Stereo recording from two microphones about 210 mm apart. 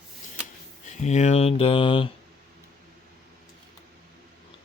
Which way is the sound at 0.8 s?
35° left (ahead or behind).